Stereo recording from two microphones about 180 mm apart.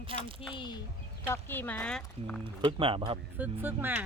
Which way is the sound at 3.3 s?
10° right (ahead or behind).